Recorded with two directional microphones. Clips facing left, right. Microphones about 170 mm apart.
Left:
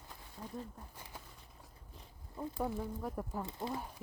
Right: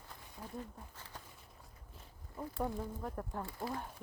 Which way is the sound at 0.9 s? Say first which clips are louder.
Left 1 dB; 15° left (ahead or behind).